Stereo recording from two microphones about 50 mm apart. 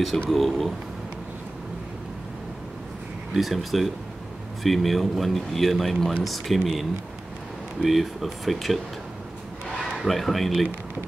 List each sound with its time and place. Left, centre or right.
0.3 s speech: centre
3.3 s speech: centre
9.9 s speech: centre